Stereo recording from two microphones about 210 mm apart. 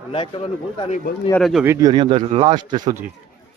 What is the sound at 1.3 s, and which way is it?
Speech, centre (ahead or behind).